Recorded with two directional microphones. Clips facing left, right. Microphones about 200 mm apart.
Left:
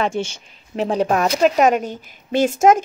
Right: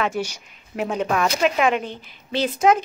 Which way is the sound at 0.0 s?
25° left (ahead or behind).